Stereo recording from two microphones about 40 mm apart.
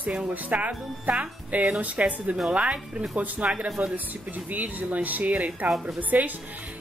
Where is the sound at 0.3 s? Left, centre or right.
Right.